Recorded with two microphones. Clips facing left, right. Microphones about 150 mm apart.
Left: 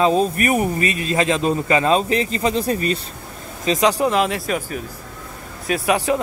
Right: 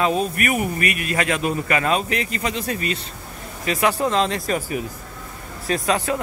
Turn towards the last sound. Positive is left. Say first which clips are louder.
# left 3 dB
turn(degrees=15)  # may be behind; listen again after turning